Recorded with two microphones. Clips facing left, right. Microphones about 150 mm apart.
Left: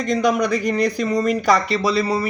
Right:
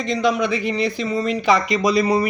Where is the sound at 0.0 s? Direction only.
45° left (ahead or behind).